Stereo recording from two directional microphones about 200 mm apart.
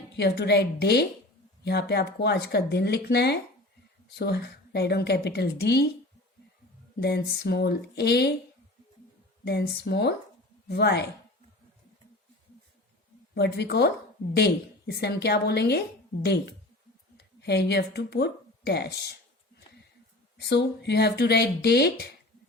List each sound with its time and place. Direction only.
0.2 s a woman's voice: 55° left (ahead or behind)
7.0 s a woman's voice: 55° left (ahead or behind)
9.4 s a woman's voice: 55° left (ahead or behind)
13.3 s a woman's voice: 55° left (ahead or behind)
20.4 s a woman's voice: 55° left (ahead or behind)